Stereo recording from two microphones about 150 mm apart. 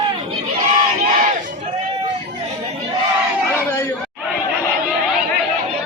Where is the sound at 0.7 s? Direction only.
55° right (ahead or behind).